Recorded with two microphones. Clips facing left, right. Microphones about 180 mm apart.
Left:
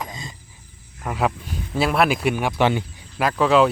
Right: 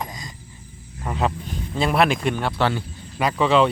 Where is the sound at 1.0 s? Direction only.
5° left (ahead or behind).